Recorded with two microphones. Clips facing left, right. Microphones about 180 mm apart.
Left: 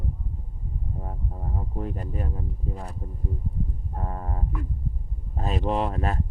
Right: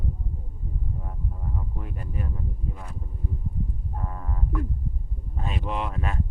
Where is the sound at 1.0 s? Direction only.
40° left (ahead or behind).